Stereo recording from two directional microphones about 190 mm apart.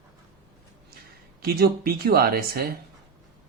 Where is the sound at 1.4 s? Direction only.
55° right (ahead or behind).